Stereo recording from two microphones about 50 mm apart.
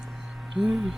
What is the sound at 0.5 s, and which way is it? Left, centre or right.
Speech, centre.